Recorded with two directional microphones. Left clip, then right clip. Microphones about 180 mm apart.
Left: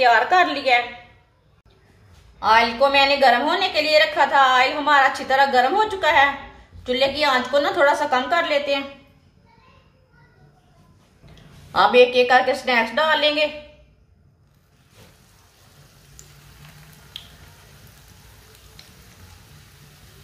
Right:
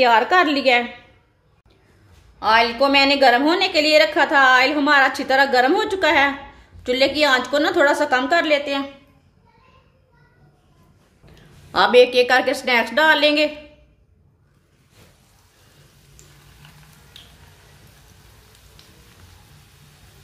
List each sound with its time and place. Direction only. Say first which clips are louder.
0.0 s a woman's voice: right 1 dB; 45° right (ahead or behind)
2.3 s a woman's voice: even; 55° right (ahead or behind)
11.7 s a woman's voice: right 1 dB; 60° right (ahead or behind)